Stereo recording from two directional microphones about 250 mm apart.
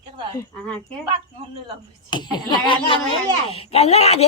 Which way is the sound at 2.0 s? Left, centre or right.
Centre.